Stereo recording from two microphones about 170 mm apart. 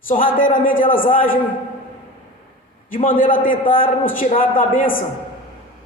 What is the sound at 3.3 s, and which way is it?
A man's voice, 55° left (ahead or behind).